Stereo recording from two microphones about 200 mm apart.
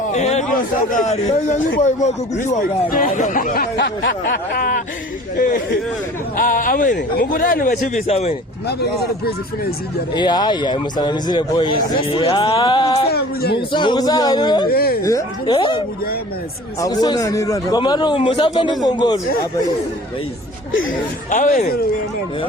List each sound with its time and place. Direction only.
0.1 s a sound: 35° left (ahead or behind)
0.9 s a man's voice: 35° left (ahead or behind)
7.9 s speech: 30° left (ahead or behind)
8.6 s a man's voice: 50° left (ahead or behind)
10.2 s a man's voice: 20° left (ahead or behind)
13.1 s a man's voice: 50° left (ahead or behind)
13.6 s a man's voice: 25° left (ahead or behind)
14.7 s a man's voice: 50° left (ahead or behind)
15.0 s a man's voice: 20° left (ahead or behind)
16.8 s a man's voice: 20° left (ahead or behind)
21.2 s speech: 40° left (ahead or behind)